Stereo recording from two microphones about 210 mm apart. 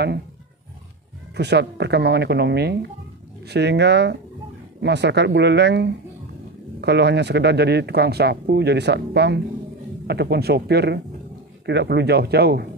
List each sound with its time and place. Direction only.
1.3 s speech: 55° right (ahead or behind)